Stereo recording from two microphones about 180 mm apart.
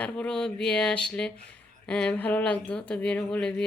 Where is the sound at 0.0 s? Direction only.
5° left (ahead or behind).